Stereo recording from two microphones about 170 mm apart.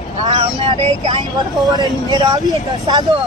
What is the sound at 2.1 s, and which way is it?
Speech, 25° right (ahead or behind).